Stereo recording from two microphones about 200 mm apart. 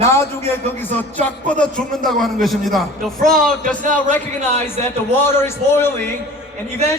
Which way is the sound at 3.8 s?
40° right (ahead or behind).